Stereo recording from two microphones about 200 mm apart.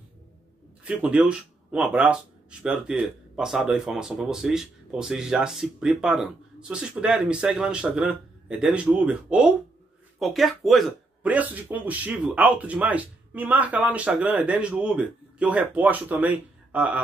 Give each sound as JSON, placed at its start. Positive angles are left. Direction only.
{"t": 0.8, "sound": "speech", "side_deg": -5}